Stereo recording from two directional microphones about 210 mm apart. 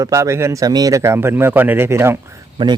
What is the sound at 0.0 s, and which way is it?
A man's voice, 15° right (ahead or behind).